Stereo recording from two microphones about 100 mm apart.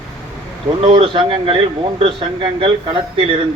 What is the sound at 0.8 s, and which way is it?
Speech, 60° right (ahead or behind).